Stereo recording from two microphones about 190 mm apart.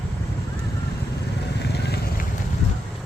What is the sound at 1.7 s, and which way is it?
Vehicle, 60° left (ahead or behind).